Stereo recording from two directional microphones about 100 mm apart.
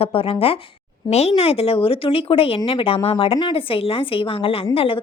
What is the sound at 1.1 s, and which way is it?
A woman's voice, 90° left.